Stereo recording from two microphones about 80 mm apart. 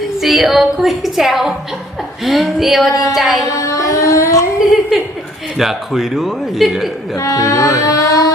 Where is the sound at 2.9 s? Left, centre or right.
Left.